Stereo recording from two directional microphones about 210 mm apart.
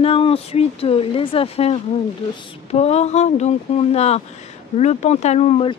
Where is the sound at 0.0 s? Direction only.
25° left (ahead or behind).